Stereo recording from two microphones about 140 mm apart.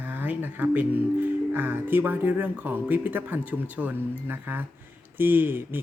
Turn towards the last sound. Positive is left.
turn(degrees=-15)  # may be behind; listen again after turning